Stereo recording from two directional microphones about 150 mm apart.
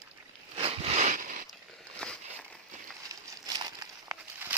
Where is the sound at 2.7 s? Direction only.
55° right (ahead or behind).